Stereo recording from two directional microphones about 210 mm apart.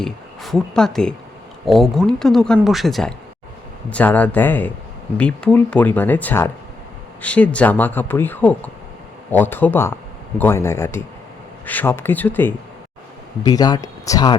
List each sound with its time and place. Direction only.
0.0 s speech: centre (ahead or behind); by 14.3 s 15° left (ahead or behind)